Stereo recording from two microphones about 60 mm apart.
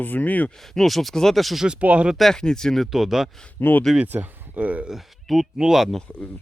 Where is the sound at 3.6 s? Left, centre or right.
Left.